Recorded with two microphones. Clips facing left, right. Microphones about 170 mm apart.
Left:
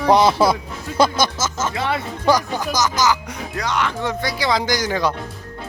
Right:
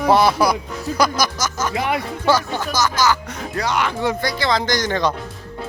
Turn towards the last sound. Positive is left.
turn(degrees=10)  # may be behind; listen again after turning